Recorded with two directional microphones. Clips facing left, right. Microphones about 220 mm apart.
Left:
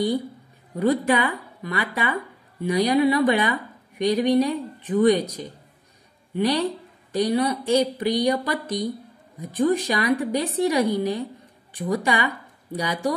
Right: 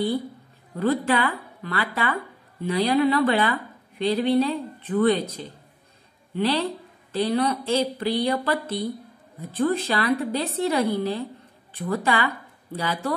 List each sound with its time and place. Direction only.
0.7 s speech: 15° left (ahead or behind)